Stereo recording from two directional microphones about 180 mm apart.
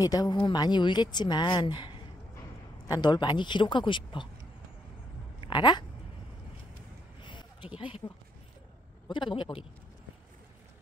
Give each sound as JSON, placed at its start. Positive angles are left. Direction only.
{"t": 0.0, "sound": "speech", "side_deg": 20}
{"t": 5.4, "sound": "speech", "side_deg": 25}
{"t": 7.2, "sound": "a sound", "side_deg": 25}
{"t": 9.0, "sound": "speech", "side_deg": 25}